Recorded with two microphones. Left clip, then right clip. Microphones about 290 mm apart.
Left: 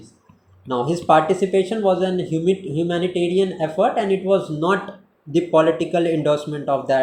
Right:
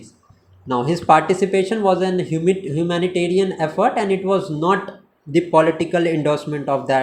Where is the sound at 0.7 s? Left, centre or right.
Centre.